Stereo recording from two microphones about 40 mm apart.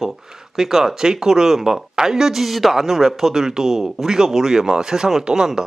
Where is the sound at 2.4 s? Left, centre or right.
Centre.